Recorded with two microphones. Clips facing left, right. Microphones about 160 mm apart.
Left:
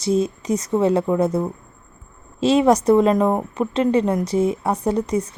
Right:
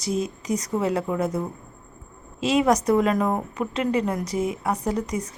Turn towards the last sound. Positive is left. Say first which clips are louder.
# left 6 dB
turn(degrees=30)  # may be behind; listen again after turning